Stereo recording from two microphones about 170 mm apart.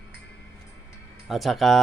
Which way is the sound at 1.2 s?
Centre (ahead or behind).